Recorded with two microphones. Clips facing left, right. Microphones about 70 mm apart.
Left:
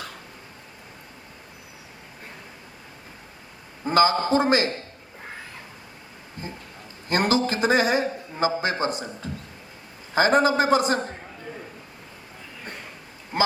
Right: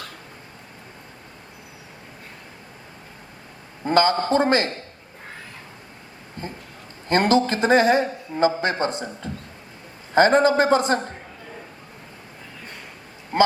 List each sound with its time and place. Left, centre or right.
3.8 s speech: centre
7.1 s a man's voice: left
10.2 s speech: centre